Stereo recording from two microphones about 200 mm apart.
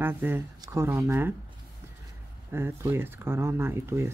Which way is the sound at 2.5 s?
15° right (ahead or behind).